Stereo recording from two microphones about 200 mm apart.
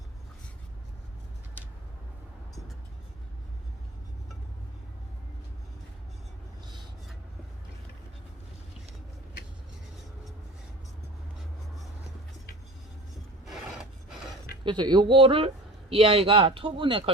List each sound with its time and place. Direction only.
13.4 s filing: centre (ahead or behind)
14.6 s speech: 25° right (ahead or behind)